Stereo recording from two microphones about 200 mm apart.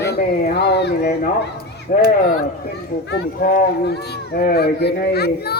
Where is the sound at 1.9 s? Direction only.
45° left (ahead or behind).